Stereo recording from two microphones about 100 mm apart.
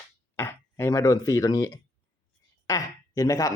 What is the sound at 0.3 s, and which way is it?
Speech, 25° left (ahead or behind).